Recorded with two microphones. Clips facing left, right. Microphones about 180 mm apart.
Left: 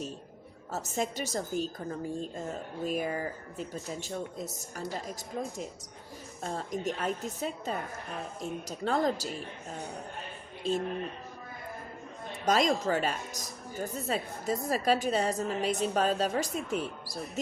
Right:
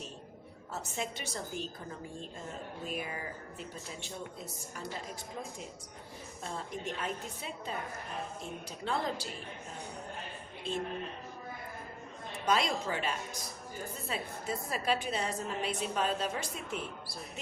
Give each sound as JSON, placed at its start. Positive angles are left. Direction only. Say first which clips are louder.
{"t": 0.7, "sound": "a woman's voice", "louder": "left 6 dB", "side_deg": 40}
{"t": 2.8, "sound": "a woman's voice", "louder": "left 9 dB", "side_deg": 40}
{"t": 6.4, "sound": "a woman's voice", "louder": "left 6 dB", "side_deg": 40}
{"t": 12.5, "sound": "a woman's voice", "louder": "left 5 dB", "side_deg": 40}